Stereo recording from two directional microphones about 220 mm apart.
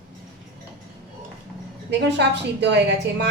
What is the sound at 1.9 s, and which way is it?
Speech, 50° right (ahead or behind).